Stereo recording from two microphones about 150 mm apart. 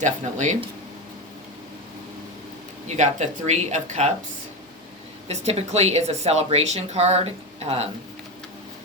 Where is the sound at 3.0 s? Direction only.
55° right (ahead or behind).